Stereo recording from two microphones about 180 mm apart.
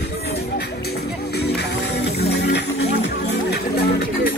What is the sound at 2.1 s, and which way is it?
Music, 65° left (ahead or behind).